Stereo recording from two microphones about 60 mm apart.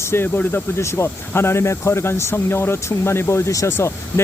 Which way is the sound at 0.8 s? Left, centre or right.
Left.